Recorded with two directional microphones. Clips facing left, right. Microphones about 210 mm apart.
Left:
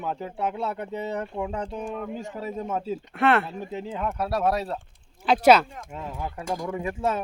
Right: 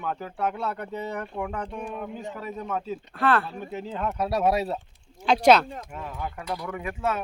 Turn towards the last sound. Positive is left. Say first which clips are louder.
# left 2 dB
turn(degrees=30)  # may be behind; listen again after turning